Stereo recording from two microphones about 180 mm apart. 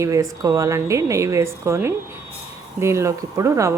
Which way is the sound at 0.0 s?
15° right (ahead or behind).